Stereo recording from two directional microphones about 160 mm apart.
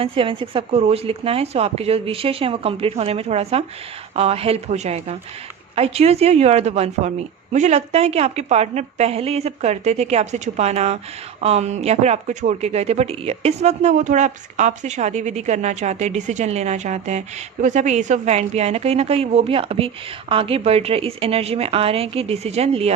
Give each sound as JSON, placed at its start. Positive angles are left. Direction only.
{"t": 0.0, "sound": "a woman's voice", "side_deg": -35}